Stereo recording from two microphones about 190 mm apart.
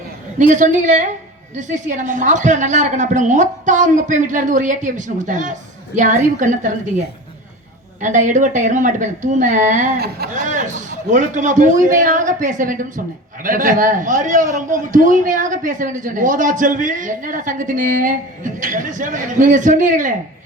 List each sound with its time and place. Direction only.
0.5 s a woman's voice: 40° right (ahead or behind)
8.0 s a woman's voice: 40° right (ahead or behind)